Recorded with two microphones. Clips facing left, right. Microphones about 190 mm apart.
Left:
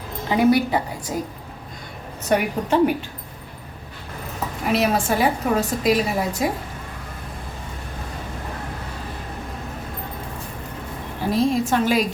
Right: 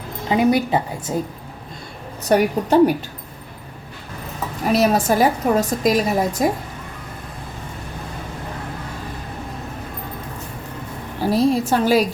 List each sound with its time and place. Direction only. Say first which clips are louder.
0.3 s a woman's voice: right 1 dB; 20° right (ahead or behind)
2.3 s a woman's voice: right 4 dB; 35° right (ahead or behind)
4.7 s a woman's voice: right 4 dB; 40° right (ahead or behind)
11.3 s a woman's voice: right 2 dB; 35° right (ahead or behind)